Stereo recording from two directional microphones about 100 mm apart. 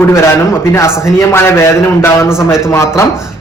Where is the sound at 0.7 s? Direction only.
25° left (ahead or behind).